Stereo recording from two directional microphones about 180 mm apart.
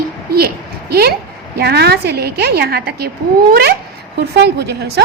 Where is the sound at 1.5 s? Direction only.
65° right (ahead or behind).